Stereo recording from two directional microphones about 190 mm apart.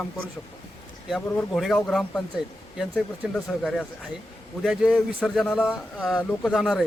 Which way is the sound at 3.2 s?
5° right (ahead or behind).